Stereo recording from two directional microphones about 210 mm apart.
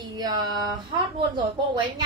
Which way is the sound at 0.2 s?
20° right (ahead or behind).